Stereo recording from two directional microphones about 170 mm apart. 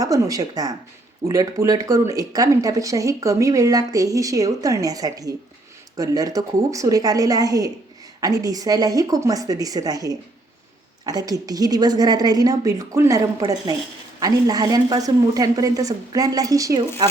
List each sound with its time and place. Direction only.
0.0 s speech: 20° right (ahead or behind)